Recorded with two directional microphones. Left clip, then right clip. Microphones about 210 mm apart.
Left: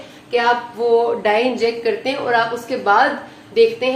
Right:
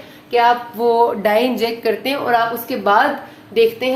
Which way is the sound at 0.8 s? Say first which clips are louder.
Right 1 dB; 40° right (ahead or behind).